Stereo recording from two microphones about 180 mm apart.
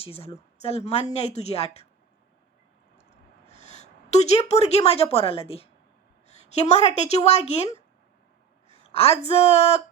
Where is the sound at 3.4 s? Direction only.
40° left (ahead or behind).